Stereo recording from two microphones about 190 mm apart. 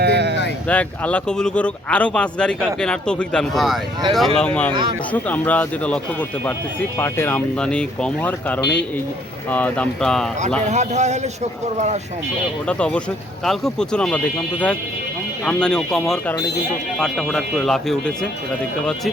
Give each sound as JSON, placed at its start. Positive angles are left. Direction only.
{"t": 0.0, "sound": "a sound", "side_deg": -60}
{"t": 0.7, "sound": "speech", "side_deg": 5}
{"t": 10.7, "sound": "a man's voice", "side_deg": -35}
{"t": 12.6, "sound": "speech", "side_deg": 5}